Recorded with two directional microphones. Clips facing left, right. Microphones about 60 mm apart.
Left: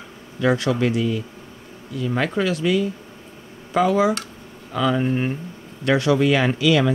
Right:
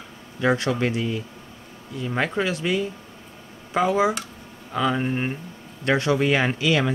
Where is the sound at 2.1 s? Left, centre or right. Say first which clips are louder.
Left 2 dB; right.